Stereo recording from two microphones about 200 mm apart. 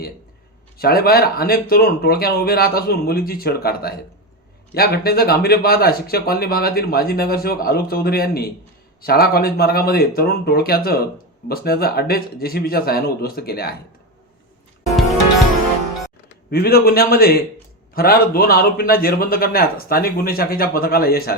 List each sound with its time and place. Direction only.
0.8 s speech: 50° left (ahead or behind)
16.5 s speech: 50° left (ahead or behind)